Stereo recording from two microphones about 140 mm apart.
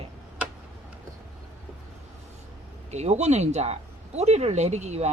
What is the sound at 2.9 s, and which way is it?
Speech, 50° right (ahead or behind).